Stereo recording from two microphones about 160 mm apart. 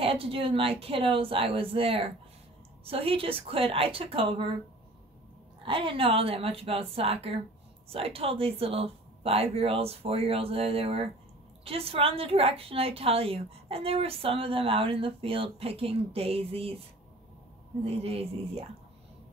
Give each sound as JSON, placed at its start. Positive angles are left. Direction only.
{"t": 0.0, "sound": "a woman's voice", "side_deg": -35}
{"t": 5.7, "sound": "a woman's voice", "side_deg": -30}
{"t": 17.8, "sound": "a woman's voice", "side_deg": -40}